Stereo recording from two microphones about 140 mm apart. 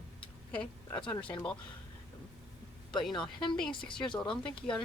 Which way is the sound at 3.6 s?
5° left (ahead or behind).